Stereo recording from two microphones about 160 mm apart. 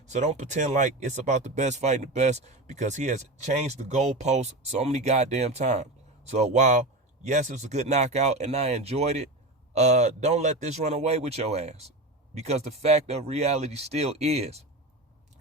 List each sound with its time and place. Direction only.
0.0 s speech: 45° right (ahead or behind)